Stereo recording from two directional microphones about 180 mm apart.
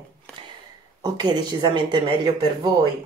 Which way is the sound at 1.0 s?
25° right (ahead or behind).